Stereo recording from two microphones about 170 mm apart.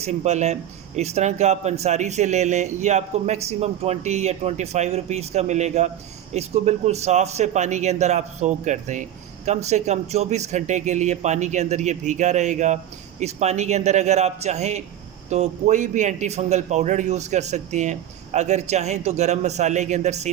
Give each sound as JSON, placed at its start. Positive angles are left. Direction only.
{"t": 0.0, "sound": "speech", "side_deg": -40}